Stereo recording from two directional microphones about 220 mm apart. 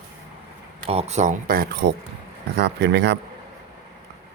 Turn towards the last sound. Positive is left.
turn(degrees=-50)  # may be behind; listen again after turning